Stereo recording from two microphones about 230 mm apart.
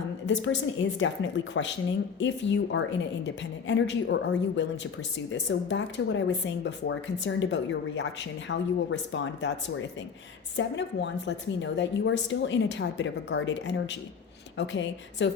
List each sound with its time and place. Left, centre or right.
0.3 s speech: left